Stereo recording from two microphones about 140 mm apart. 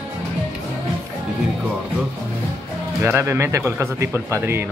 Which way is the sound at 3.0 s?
20° right (ahead or behind).